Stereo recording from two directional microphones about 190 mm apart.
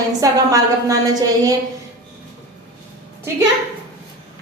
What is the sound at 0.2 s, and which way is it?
Speech, 20° right (ahead or behind).